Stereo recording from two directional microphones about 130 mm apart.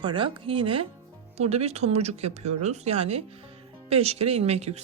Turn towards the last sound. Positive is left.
turn(degrees=-55)  # may be behind; listen again after turning